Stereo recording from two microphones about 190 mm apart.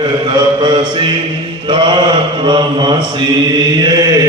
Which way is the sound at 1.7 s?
25° right (ahead or behind).